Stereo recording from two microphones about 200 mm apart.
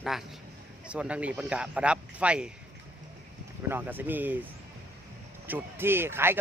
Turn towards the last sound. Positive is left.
turn(degrees=-10)  # may be behind; listen again after turning